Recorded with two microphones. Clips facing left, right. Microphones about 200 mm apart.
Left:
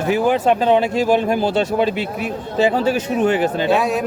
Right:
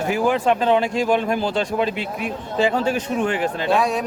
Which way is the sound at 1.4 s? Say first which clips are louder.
Left 4 dB; 5° left (ahead or behind).